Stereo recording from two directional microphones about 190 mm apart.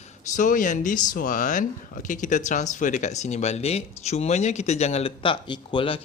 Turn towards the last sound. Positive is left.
turn(degrees=25)  # may be behind; listen again after turning